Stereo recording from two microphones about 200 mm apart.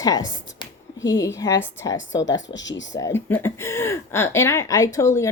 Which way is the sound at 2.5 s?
65° left (ahead or behind).